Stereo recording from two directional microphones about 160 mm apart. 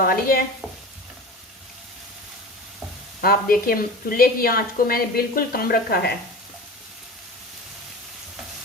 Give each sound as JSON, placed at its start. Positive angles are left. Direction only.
{"t": 0.0, "sound": "speech", "side_deg": 65}
{"t": 3.2, "sound": "speech", "side_deg": 65}